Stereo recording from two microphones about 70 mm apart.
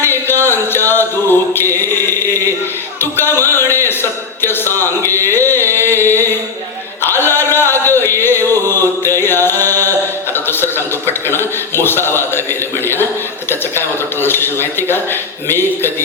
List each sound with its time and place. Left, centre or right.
0.0 s music: left
3.0 s speech: left
4.4 s a sound: left
11.3 s a man's voice: left